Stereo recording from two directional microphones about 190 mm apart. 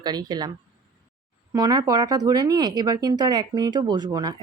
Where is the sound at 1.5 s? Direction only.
20° right (ahead or behind).